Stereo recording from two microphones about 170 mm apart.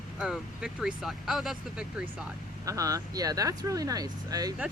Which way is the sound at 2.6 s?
20° right (ahead or behind).